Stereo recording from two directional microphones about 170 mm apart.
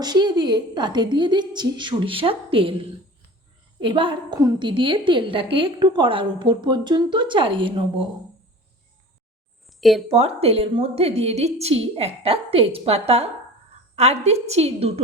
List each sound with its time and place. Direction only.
0.0 s a woman's voice: 25° right (ahead or behind)
10.1 s a woman's voice: 35° right (ahead or behind)